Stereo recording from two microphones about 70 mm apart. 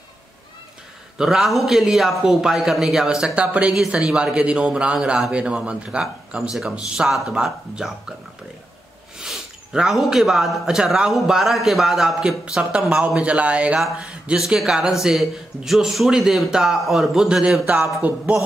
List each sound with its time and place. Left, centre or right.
1.1 s a man's voice: centre
9.2 s a man's voice: centre
12.2 s a man's voice: centre
14.4 s a man's voice: centre; by 18.2 s right